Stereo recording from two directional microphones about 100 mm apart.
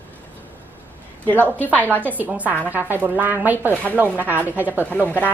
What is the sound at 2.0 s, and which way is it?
A woman's voice, 15° right (ahead or behind).